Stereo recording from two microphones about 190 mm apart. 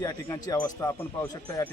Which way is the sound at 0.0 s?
20° left (ahead or behind).